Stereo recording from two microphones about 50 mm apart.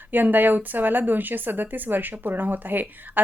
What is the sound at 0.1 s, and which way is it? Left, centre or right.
A woman's voice, right.